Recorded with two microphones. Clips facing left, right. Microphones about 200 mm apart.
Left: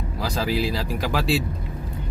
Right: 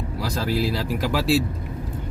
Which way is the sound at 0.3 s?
Centre (ahead or behind).